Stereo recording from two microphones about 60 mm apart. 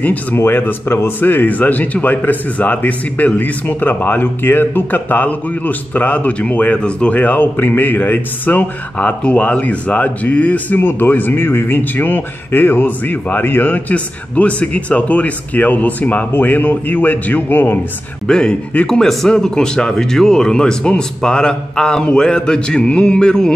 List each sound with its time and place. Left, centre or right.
0.0 s speech: left
8.9 s speech: centre
10.8 s speech: left
18.2 s speech: centre